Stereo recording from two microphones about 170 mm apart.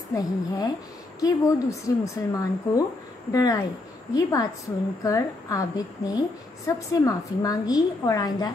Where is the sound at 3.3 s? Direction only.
20° left (ahead or behind).